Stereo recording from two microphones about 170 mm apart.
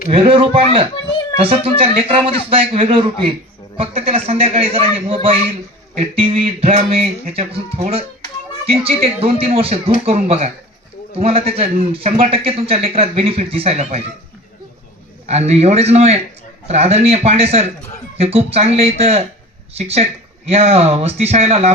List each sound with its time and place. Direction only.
0.1 s a man's voice: 30° right (ahead or behind)
15.3 s a man's voice: 40° right (ahead or behind)